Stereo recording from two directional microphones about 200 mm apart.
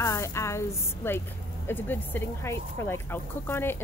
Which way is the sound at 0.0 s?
15° left (ahead or behind).